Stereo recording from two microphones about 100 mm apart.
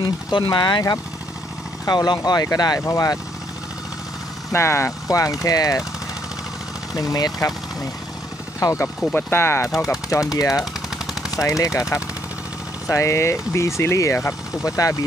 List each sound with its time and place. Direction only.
0.0 s speech: 50° left (ahead or behind); by 3.2 s 30° left (ahead or behind)
4.5 s speech: 25° left (ahead or behind)
6.9 s speech: 40° left (ahead or behind)
8.5 s speech: 35° left (ahead or behind)
9.1 s speech: 25° left (ahead or behind)
12.8 s speech: 30° left (ahead or behind)